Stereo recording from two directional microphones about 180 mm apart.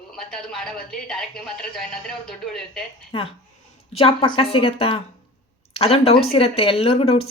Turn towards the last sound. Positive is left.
turn(degrees=35)  # may be behind; listen again after turning